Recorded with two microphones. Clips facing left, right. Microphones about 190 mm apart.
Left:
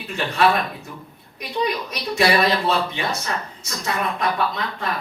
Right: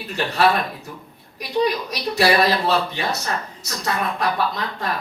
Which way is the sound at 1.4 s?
40° right (ahead or behind).